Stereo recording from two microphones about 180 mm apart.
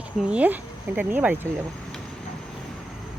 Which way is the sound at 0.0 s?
5° right (ahead or behind).